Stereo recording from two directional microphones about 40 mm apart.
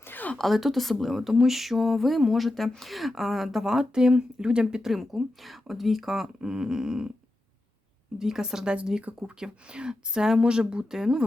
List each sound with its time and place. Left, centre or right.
0.0 s a sound: left
0.3 s speech: centre; by 4.8 s right
4.8 s speech: centre
8.2 s speech: centre